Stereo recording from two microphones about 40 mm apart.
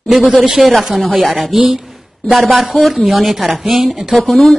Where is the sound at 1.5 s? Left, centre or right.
Centre.